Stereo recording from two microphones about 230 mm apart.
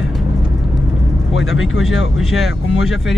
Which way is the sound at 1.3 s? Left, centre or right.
Left.